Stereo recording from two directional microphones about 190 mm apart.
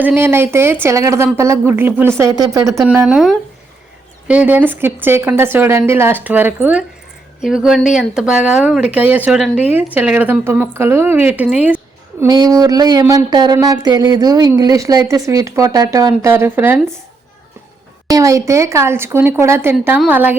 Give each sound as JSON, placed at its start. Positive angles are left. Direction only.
{"t": 0.0, "sound": "a woman's voice", "side_deg": -10}
{"t": 12.2, "sound": "speech", "side_deg": -20}
{"t": 18.1, "sound": "a woman's voice", "side_deg": -15}